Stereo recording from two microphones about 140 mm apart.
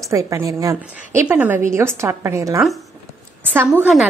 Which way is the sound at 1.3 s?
10° right (ahead or behind).